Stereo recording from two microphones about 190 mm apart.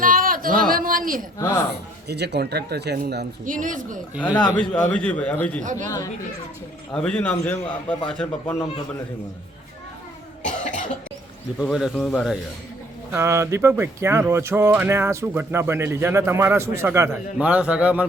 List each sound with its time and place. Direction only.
0.0 s a sound: 45° right (ahead or behind)
1.7 s a man's voice: 60° right (ahead or behind)
3.5 s speech: 45° right (ahead or behind)
4.5 s a man's voice: 5° left (ahead or behind)
6.9 s a man's voice: 5° left (ahead or behind)
10.4 s cough: 40° left (ahead or behind)
11.6 s speech: centre (ahead or behind)
13.1 s speech: 15° right (ahead or behind)